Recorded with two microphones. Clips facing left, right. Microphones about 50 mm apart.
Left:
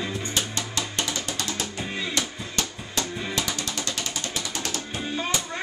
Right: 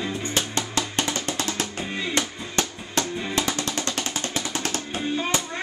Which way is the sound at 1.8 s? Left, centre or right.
Centre.